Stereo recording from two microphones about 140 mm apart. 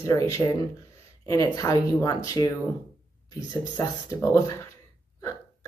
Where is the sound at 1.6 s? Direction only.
25° left (ahead or behind).